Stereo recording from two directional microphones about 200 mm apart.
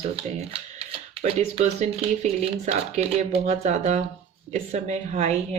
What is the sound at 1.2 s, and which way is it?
Speech, 35° right (ahead or behind).